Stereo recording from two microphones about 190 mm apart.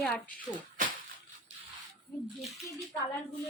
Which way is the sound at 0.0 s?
5° left (ahead or behind).